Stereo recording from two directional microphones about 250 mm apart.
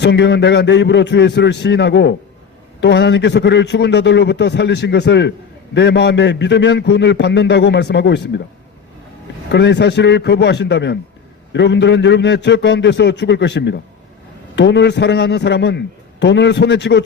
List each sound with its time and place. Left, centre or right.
0.0 s a man's voice: left
9.5 s a man's voice: left